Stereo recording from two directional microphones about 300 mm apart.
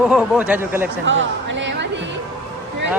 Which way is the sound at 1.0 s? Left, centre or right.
Right.